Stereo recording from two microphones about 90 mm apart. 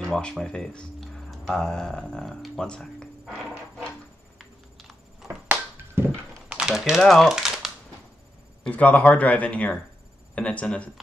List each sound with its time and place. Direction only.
0.0 s speech: 10° left (ahead or behind)
4.4 s a sound: centre (ahead or behind)
5.5 s music: 25° right (ahead or behind)
6.5 s speech: 5° right (ahead or behind)
8.6 s speech: 15° left (ahead or behind)